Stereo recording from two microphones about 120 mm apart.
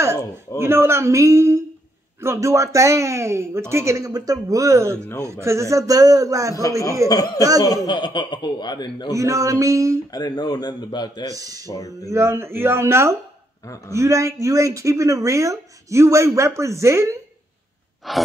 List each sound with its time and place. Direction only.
0.6 s speech: 20° right (ahead or behind)
7.1 s speech: 30° left (ahead or behind)
9.1 s speech: 25° right (ahead or behind)
10.1 s speech: 35° left (ahead or behind)
11.3 s speech: 30° right (ahead or behind)
11.6 s speech: 30° left (ahead or behind)
12.1 s speech: 20° right (ahead or behind)
18.1 s a sound: centre (ahead or behind)